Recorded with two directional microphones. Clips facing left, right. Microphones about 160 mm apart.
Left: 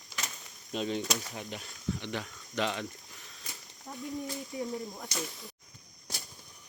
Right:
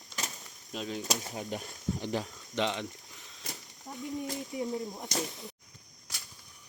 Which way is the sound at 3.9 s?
5° right (ahead or behind).